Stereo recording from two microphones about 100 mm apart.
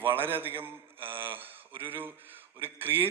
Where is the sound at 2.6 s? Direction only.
20° right (ahead or behind).